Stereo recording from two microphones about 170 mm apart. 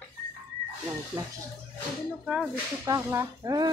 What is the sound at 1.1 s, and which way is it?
Speech, 10° right (ahead or behind).